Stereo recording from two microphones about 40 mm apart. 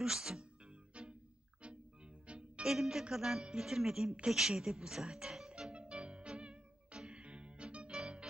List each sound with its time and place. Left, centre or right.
0.0 s speech: centre
0.6 s music: right
2.6 s speech: centre
3.0 s music: centre
3.6 s speech: centre
5.5 s music: centre
5.7 s music: right